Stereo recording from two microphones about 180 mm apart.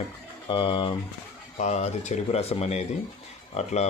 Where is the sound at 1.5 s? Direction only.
40° left (ahead or behind).